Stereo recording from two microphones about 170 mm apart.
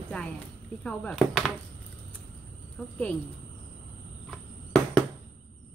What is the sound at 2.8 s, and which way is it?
Speech, 5° left (ahead or behind).